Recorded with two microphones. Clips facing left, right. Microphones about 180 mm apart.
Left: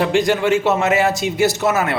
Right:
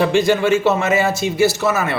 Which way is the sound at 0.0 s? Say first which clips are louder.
Right 1 dB; 15° left (ahead or behind).